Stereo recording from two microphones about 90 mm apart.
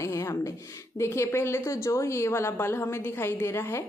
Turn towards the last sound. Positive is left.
turn(degrees=30)  # may be behind; listen again after turning